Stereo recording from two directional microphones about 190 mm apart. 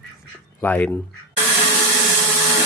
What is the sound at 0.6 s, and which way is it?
Speech, 10° left (ahead or behind).